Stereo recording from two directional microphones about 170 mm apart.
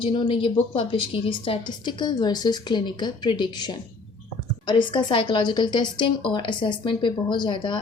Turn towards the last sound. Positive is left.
turn(degrees=25)  # may be behind; listen again after turning